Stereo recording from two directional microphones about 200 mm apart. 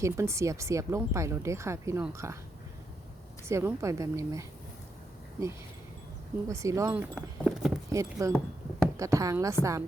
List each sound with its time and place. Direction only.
0.0 s speech: 15° right (ahead or behind)
3.5 s speech: 10° right (ahead or behind)
6.5 s speech: 15° right (ahead or behind)